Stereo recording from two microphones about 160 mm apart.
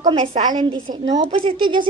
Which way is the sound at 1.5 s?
30° right (ahead or behind).